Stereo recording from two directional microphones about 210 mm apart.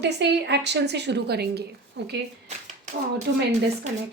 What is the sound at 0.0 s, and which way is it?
A woman's voice, 55° right (ahead or behind).